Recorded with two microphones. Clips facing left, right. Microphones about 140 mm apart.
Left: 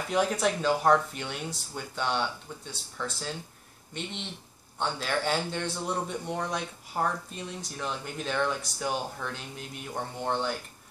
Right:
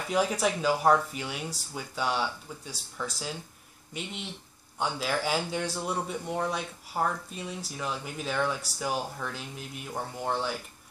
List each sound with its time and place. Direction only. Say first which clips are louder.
0.1 s speech: even; 5° right (ahead or behind)